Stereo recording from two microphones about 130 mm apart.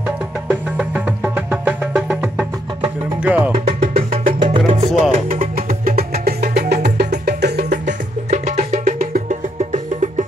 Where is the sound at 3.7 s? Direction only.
55° right (ahead or behind).